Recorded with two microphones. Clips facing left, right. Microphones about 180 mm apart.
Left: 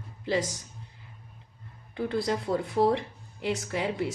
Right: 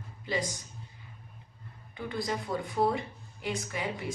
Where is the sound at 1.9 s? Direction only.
65° left (ahead or behind).